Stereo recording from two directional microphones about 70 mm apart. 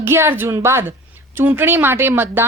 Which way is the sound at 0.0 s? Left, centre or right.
Right.